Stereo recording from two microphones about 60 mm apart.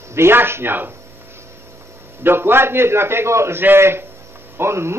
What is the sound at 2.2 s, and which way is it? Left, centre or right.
A man's voice, right.